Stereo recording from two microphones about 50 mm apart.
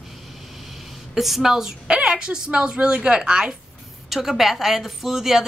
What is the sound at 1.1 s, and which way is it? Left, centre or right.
A woman's voice, centre.